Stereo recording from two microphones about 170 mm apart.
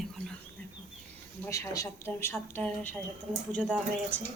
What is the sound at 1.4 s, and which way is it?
A woman's voice, 20° left (ahead or behind).